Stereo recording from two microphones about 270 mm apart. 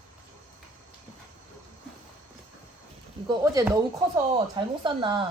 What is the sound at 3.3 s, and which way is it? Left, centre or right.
Speech, centre.